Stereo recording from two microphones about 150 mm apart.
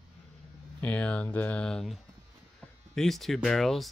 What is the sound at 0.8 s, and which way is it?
Speech, 10° left (ahead or behind).